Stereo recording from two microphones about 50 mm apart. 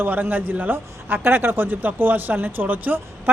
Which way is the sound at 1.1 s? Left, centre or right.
Right.